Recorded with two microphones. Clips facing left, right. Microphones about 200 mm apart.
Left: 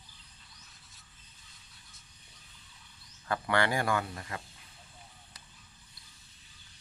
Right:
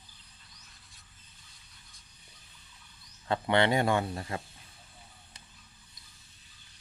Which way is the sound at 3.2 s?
25° right (ahead or behind).